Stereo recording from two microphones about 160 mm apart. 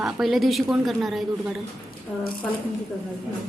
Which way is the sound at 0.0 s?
Centre (ahead or behind).